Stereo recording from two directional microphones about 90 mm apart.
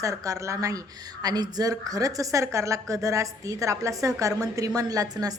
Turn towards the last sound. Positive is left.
turn(degrees=-45)  # may be behind; listen again after turning